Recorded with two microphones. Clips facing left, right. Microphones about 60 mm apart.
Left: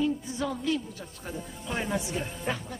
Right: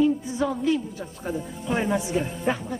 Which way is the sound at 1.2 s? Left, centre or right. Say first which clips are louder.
Right 8 dB; centre.